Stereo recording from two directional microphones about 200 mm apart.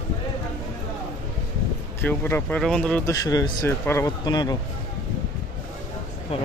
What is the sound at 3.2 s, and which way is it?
Speech, 15° left (ahead or behind).